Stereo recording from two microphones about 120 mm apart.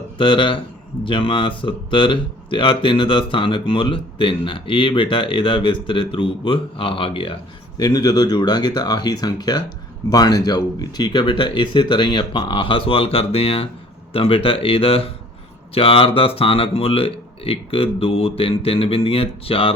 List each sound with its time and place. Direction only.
0.2 s speech: 45° left (ahead or behind)
7.8 s speech: 35° left (ahead or behind); by 19.7 s 50° left (ahead or behind)